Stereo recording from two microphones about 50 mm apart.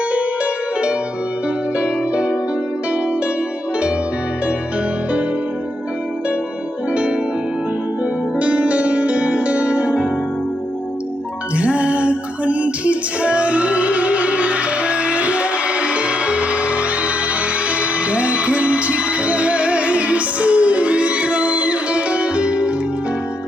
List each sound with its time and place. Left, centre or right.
0.1 s music: right
6.9 s music: right
8.4 s music: right
11.5 s music: right